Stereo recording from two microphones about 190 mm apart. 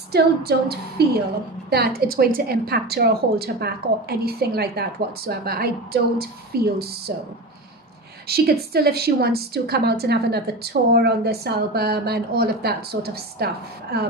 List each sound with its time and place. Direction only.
0.1 s a woman's voice: 55° right (ahead or behind)
8.3 s a woman's voice: 55° right (ahead or behind)